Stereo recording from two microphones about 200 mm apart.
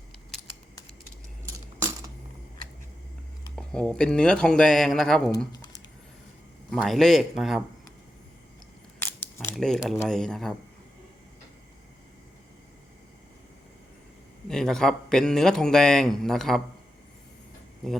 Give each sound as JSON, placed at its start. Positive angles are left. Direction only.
{"t": 3.5, "sound": "a man's voice", "side_deg": 5}
{"t": 5.5, "sound": "squish", "side_deg": 20}
{"t": 6.7, "sound": "a man's voice", "side_deg": 0}
{"t": 9.0, "sound": "a sound", "side_deg": 10}
{"t": 10.1, "sound": "a man's voice", "side_deg": 5}
{"t": 14.4, "sound": "a man's voice", "side_deg": 5}